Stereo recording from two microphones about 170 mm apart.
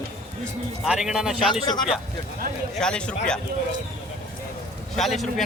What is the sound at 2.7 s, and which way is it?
Speech, 5° left (ahead or behind).